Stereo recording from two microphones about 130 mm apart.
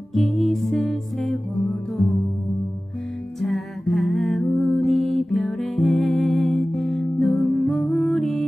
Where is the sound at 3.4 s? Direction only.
Centre (ahead or behind).